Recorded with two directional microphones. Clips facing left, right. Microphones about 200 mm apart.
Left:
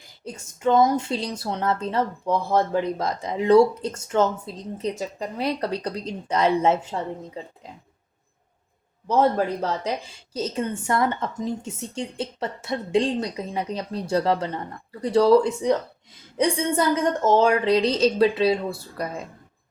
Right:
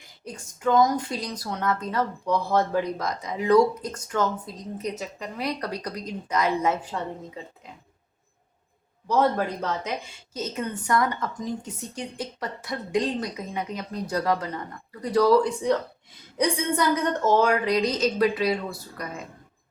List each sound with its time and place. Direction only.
0.3 s a woman's voice: 25° left (ahead or behind)
9.0 s a woman's voice: 30° left (ahead or behind)